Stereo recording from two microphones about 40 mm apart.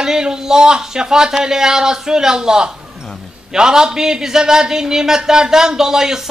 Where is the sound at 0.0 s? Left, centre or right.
Centre.